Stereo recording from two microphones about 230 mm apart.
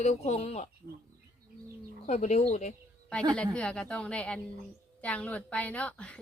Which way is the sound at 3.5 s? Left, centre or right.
Centre.